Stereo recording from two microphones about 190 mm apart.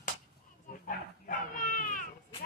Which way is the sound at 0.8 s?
45° left (ahead or behind).